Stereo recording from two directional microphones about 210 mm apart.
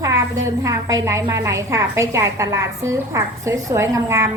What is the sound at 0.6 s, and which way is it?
A woman's voice, 15° right (ahead or behind).